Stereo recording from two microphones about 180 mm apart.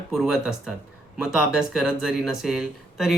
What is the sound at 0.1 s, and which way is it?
Speech, centre (ahead or behind).